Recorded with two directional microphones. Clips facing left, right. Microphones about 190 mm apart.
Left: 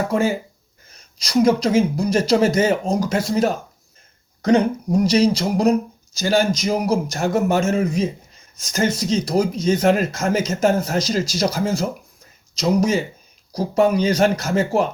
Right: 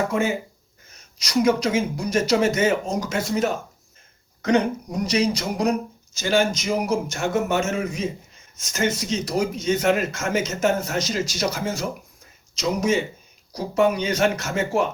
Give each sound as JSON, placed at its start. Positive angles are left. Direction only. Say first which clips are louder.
{"t": 0.1, "sound": "speech", "louder": "left 3 dB", "side_deg": 35}